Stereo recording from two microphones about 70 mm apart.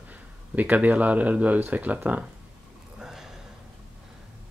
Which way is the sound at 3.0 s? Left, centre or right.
Centre.